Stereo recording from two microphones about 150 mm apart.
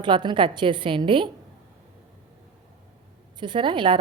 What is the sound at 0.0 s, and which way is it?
A woman's voice, 35° right (ahead or behind).